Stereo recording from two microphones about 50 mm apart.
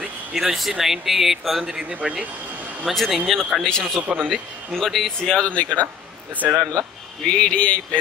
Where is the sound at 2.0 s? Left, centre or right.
Right.